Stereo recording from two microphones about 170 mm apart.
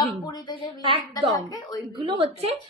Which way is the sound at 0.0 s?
25° left (ahead or behind).